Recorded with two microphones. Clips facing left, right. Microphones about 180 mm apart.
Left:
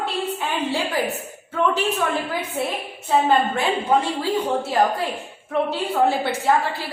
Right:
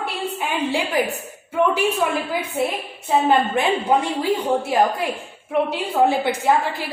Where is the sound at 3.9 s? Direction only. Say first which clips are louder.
Even; 15° right (ahead or behind).